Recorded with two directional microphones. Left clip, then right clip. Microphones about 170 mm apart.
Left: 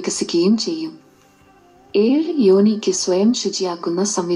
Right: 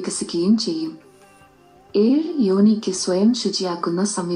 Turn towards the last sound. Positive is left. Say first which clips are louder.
# left 3 dB
turn(degrees=20)  # may be behind; listen again after turning